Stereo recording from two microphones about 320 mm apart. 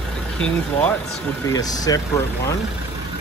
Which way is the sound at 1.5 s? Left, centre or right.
Centre.